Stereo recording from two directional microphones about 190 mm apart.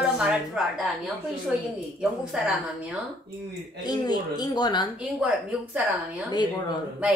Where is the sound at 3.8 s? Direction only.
20° left (ahead or behind).